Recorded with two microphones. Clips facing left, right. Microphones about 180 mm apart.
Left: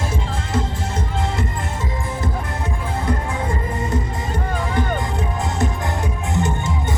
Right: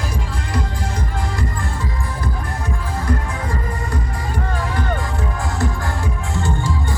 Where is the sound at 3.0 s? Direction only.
25° left (ahead or behind).